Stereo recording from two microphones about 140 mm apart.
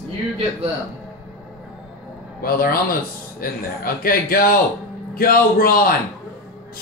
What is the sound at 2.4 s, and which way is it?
A man's voice, 90° left.